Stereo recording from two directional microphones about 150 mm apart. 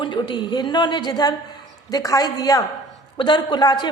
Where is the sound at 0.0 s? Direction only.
30° left (ahead or behind).